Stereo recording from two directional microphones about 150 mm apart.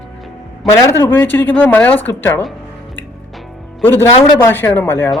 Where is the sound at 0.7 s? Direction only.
15° left (ahead or behind).